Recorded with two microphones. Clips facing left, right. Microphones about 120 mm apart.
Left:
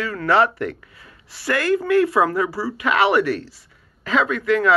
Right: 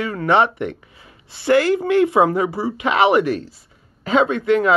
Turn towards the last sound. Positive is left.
turn(degrees=-25)  # may be behind; listen again after turning